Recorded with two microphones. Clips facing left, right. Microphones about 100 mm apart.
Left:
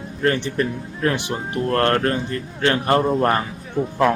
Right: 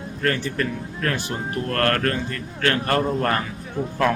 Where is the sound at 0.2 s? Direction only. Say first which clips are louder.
Left 4 dB; 20° left (ahead or behind).